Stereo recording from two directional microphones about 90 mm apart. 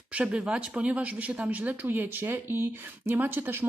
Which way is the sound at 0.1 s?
15° right (ahead or behind).